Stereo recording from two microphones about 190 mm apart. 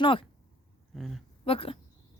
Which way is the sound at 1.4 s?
30° left (ahead or behind).